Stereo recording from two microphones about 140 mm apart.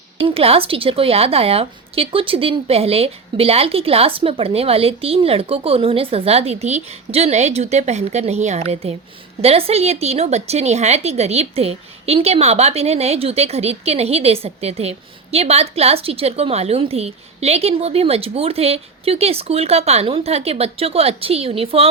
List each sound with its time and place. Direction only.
0.2 s a woman's voice: 40° right (ahead or behind)